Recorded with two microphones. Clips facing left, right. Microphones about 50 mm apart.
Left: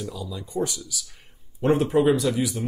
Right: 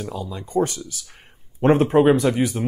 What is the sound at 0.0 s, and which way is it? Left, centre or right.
Speech, right.